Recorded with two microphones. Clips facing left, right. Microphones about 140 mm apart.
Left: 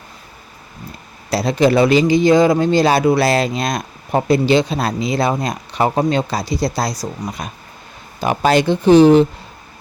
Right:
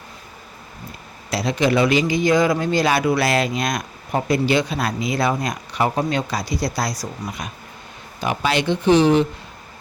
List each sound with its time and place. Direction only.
1.3 s a man's voice: 35° left (ahead or behind)